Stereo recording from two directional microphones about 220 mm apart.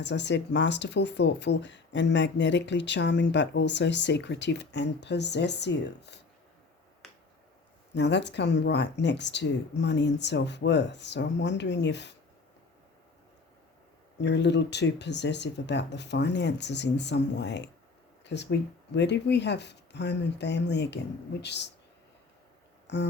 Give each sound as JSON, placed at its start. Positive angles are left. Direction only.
{"t": 0.0, "sound": "speech", "side_deg": 55}
{"t": 7.9, "sound": "speech", "side_deg": 50}
{"t": 14.2, "sound": "speech", "side_deg": 50}
{"t": 18.9, "sound": "speech", "side_deg": 50}
{"t": 22.9, "sound": "speech", "side_deg": 50}